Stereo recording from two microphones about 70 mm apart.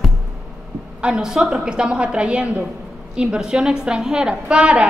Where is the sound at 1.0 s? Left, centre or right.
Centre.